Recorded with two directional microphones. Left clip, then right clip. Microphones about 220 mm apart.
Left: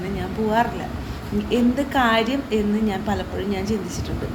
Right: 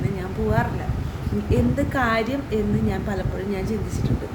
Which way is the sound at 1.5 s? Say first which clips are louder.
Left 2 dB; 10° right (ahead or behind).